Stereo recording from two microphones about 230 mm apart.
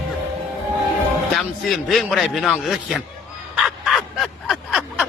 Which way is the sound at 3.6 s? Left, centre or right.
Centre.